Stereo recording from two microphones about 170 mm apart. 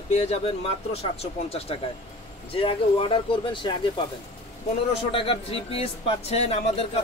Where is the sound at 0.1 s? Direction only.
40° left (ahead or behind).